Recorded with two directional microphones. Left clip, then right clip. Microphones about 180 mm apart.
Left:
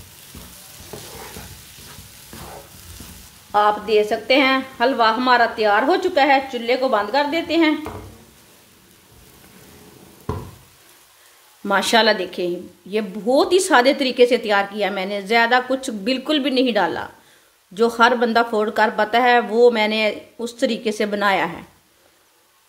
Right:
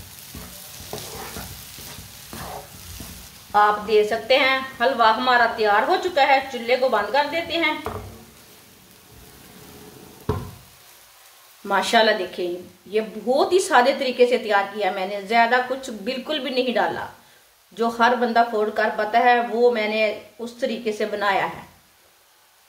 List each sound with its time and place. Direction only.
3.5 s a woman's voice: 45° left (ahead or behind)
11.6 s a woman's voice: 50° left (ahead or behind)